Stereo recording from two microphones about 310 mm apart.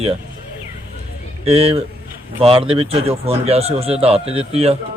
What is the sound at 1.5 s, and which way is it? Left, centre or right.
Speech, centre.